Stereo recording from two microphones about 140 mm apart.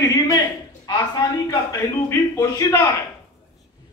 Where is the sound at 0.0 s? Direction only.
25° left (ahead or behind).